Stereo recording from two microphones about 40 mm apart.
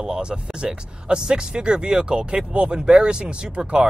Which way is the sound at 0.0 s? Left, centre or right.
Right.